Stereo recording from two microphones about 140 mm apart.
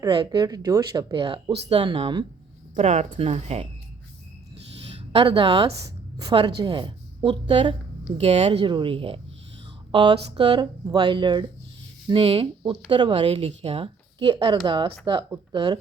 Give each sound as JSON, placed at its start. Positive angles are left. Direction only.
{"t": 0.0, "sound": "speech", "side_deg": -30}
{"t": 1.1, "sound": "a woman's voice", "side_deg": -35}
{"t": 2.7, "sound": "speech", "side_deg": -55}
{"t": 5.1, "sound": "a woman's voice", "side_deg": -40}